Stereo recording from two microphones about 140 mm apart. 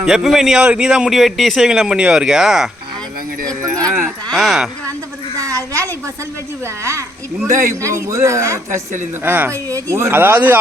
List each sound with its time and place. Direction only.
0.0 s a man's voice: 5° right (ahead or behind)
3.4 s speech: 25° right (ahead or behind)
4.3 s a man's voice: 5° right (ahead or behind)
5.5 s a woman's voice: 20° right (ahead or behind)
7.8 s speech: 20° right (ahead or behind)